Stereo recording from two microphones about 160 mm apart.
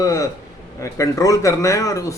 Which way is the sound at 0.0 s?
20° left (ahead or behind).